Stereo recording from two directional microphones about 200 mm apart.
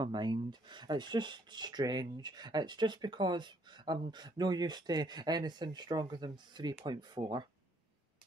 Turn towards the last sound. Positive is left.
turn(degrees=-25)  # may be behind; listen again after turning